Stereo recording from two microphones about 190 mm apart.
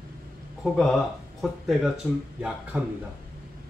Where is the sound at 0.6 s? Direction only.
Centre (ahead or behind).